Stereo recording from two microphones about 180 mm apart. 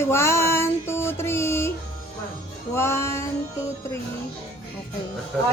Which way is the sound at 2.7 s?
15° left (ahead or behind).